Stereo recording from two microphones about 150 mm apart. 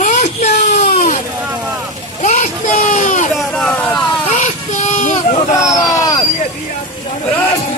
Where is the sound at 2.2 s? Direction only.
55° left (ahead or behind).